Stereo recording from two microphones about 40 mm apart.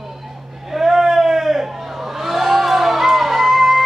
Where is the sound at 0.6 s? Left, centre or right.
Centre.